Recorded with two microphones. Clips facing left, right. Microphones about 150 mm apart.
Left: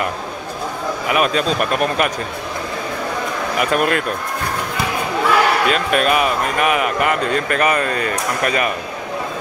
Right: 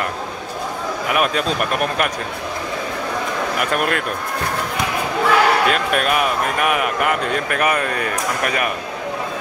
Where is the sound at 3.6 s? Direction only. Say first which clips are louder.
Left 5 dB; centre (ahead or behind).